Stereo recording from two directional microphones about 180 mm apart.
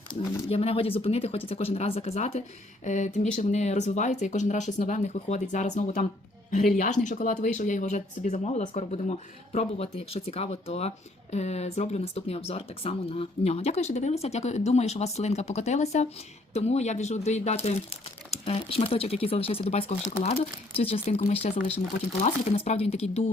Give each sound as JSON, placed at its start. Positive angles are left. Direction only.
{"t": 0.1, "sound": "speech", "side_deg": 35}